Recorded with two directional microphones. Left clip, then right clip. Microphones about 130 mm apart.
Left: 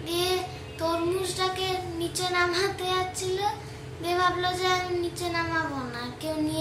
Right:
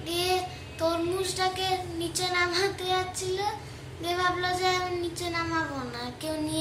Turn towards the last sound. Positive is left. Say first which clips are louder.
# left 2 dB
turn(degrees=-25)  # may be behind; listen again after turning